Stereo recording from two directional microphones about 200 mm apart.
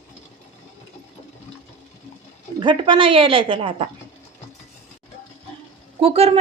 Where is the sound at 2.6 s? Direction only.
25° right (ahead or behind).